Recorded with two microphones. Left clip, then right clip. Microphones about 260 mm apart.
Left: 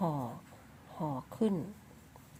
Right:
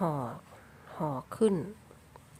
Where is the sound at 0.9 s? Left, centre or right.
Right.